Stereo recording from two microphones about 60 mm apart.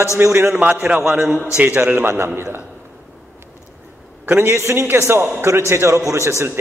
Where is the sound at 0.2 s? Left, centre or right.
Right.